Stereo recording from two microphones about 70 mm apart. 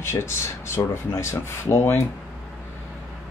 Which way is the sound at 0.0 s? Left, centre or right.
Left.